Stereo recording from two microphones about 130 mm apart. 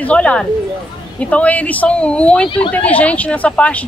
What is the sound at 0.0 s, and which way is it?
A woman's voice, 10° left (ahead or behind).